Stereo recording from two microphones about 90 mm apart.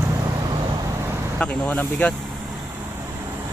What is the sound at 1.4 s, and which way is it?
Speech, 15° left (ahead or behind).